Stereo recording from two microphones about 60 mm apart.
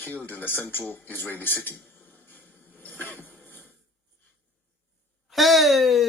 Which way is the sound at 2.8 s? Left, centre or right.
Left.